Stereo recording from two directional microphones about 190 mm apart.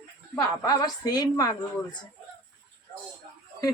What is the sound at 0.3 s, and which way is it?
A woman's voice, 20° left (ahead or behind).